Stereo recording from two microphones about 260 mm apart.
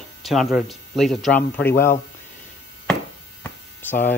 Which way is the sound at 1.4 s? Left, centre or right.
Left.